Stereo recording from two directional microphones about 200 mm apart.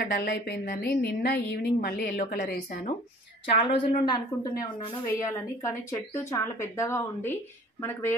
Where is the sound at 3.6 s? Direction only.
25° left (ahead or behind).